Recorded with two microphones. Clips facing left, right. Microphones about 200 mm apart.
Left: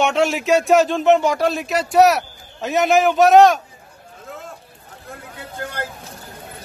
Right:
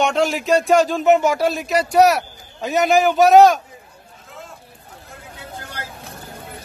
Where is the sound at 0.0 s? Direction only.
Centre (ahead or behind).